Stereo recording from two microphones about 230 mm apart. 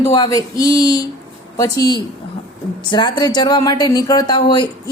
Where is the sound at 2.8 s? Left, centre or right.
Centre.